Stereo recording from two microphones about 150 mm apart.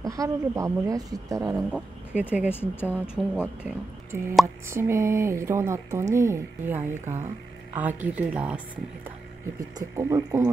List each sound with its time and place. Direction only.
0.0 s speech: 20° right (ahead or behind)
1.7 s speech: 10° right (ahead or behind)
2.5 s speech: 15° left (ahead or behind)
3.3 s speech: 10° right (ahead or behind)
9.8 s speech: 20° right (ahead or behind)